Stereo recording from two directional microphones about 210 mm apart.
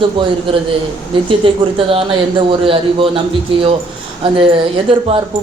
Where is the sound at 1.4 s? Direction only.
25° right (ahead or behind).